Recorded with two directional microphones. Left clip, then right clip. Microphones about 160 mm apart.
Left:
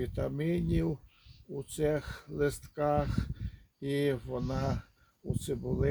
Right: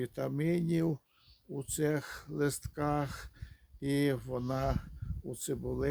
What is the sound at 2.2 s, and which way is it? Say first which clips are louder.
Speech: left 2 dB; 5° right (ahead or behind).